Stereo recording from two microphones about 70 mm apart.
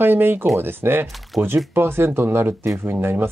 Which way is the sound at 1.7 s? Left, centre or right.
Right.